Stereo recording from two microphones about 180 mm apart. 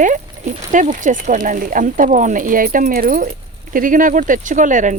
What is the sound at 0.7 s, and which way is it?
Speech, 45° right (ahead or behind).